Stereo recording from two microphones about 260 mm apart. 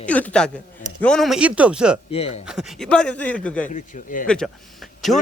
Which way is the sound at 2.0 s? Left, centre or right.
Left.